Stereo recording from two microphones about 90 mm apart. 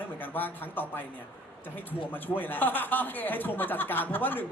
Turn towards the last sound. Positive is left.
turn(degrees=20)  # may be behind; listen again after turning